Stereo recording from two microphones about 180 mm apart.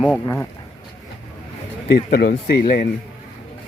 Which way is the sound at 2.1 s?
55° left (ahead or behind).